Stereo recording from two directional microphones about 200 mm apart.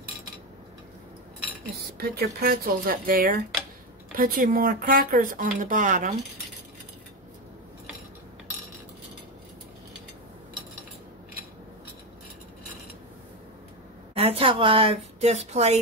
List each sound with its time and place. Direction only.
2.0 s speech: 50° right (ahead or behind)
14.1 s speech: 30° right (ahead or behind)